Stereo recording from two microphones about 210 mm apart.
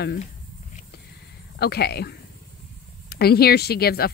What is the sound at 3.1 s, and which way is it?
Speech, 50° left (ahead or behind).